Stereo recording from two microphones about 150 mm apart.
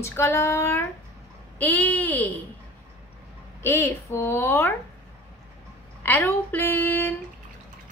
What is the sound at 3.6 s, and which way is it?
Speech, 15° left (ahead or behind).